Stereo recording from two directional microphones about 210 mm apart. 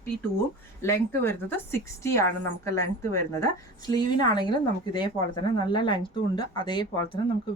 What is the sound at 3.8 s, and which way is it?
Speech, 20° left (ahead or behind).